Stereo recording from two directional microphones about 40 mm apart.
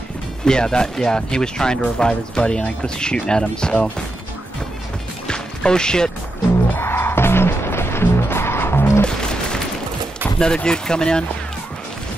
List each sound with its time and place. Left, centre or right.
0.5 s speech: centre
5.3 s music: left
6.8 s music: left
9.0 s a sound: left
10.4 s speech: centre